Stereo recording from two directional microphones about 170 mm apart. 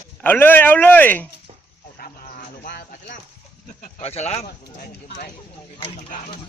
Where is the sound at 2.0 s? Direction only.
60° left (ahead or behind).